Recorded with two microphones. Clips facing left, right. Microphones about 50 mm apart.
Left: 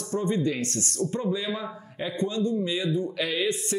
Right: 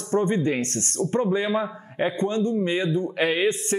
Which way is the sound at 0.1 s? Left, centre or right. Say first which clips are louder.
Right 4 dB; right.